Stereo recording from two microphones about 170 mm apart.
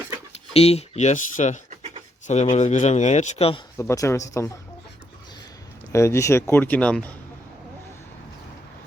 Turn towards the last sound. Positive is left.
turn(degrees=5)  # may be behind; listen again after turning